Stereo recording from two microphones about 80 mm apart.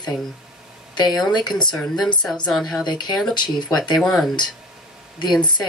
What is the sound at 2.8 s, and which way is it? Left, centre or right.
Speech, left.